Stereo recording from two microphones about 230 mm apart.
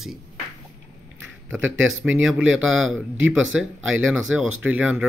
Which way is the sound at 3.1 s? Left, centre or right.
Right.